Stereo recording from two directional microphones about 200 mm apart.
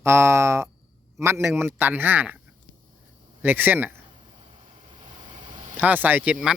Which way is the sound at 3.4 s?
10° right (ahead or behind).